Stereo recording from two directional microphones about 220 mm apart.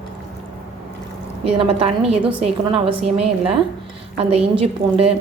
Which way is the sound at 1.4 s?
25° right (ahead or behind).